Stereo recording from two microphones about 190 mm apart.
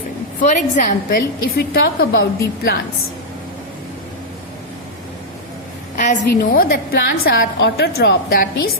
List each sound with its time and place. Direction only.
0.4 s a woman's voice: 40° left (ahead or behind)
6.0 s a woman's voice: 50° left (ahead or behind)